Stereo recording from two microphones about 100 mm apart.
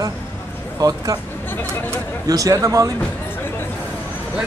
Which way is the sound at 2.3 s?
35° right (ahead or behind).